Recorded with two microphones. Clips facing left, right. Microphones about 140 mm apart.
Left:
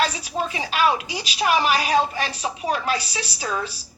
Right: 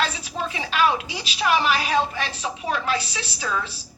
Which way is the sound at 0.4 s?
30° left (ahead or behind).